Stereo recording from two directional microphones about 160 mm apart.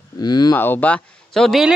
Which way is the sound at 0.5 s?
10° left (ahead or behind).